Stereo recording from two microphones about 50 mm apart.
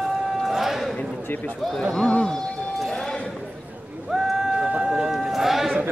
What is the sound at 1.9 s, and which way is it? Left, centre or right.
Speech, centre.